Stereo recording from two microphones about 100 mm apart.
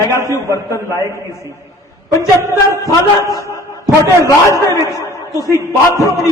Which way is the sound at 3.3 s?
30° left (ahead or behind).